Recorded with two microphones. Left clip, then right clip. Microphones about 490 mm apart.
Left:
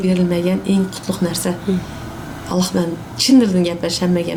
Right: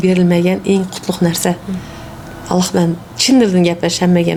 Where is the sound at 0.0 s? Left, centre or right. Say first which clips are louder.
Right 5 dB; right.